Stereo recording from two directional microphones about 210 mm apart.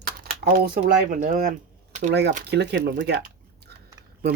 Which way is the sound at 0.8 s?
40° right (ahead or behind).